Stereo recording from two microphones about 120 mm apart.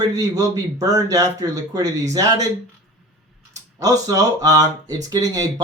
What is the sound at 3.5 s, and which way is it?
Speech, 30° right (ahead or behind).